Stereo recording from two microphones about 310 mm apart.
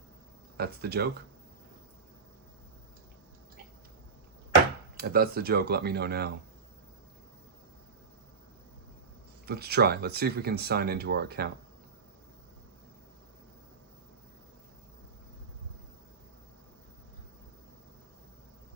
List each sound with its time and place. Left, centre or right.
0.5 s speech: right
4.9 s speech: right
9.5 s speech: right